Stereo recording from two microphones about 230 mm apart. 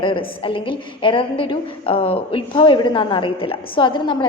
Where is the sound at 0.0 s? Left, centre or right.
Left.